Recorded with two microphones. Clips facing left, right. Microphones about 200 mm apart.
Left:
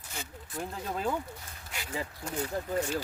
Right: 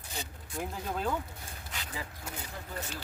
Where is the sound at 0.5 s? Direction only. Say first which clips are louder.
Even; centre (ahead or behind).